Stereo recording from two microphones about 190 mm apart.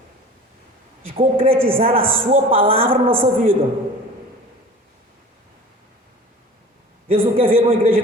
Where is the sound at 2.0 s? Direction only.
10° right (ahead or behind).